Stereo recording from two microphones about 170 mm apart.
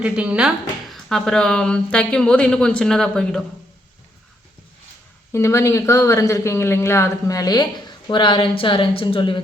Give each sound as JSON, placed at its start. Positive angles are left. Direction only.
{"t": 0.0, "sound": "speech", "side_deg": -5}
{"t": 5.3, "sound": "speech", "side_deg": 15}